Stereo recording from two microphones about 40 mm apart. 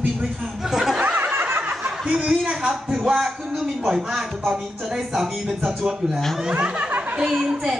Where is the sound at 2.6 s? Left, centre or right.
Centre.